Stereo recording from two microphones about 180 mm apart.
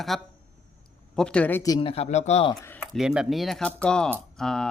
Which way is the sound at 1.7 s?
30° left (ahead or behind).